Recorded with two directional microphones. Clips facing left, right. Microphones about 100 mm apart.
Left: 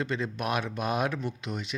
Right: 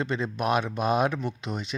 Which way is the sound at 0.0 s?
25° right (ahead or behind).